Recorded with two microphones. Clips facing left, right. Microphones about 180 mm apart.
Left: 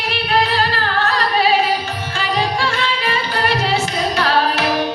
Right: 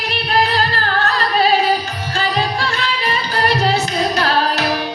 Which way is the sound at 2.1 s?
40° right (ahead or behind).